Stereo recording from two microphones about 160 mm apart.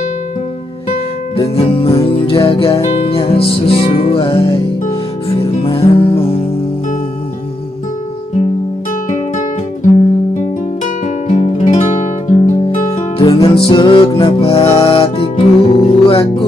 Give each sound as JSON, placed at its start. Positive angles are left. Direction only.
{"t": 1.6, "sound": "music", "side_deg": 35}
{"t": 11.2, "sound": "music", "side_deg": 45}